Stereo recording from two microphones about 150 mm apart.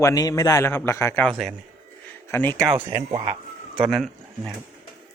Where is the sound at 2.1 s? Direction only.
15° left (ahead or behind).